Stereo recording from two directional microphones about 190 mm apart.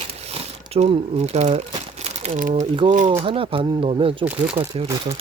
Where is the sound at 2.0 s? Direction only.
35° right (ahead or behind).